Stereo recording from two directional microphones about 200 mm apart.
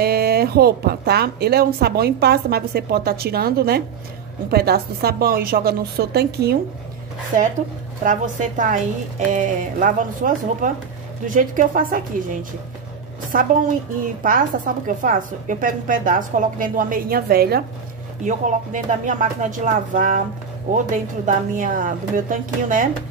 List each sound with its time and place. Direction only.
0.0 s a woman's voice: 50° right (ahead or behind)
8.0 s a woman's voice: 40° right (ahead or behind)
18.2 s a woman's voice: 40° right (ahead or behind)